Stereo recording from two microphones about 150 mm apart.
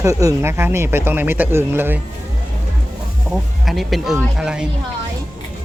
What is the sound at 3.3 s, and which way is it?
Speech, centre (ahead or behind).